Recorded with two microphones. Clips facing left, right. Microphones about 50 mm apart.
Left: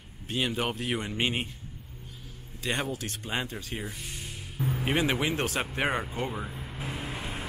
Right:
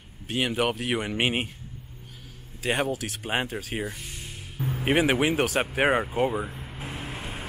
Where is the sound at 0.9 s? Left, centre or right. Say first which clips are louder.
Right 4 dB; right.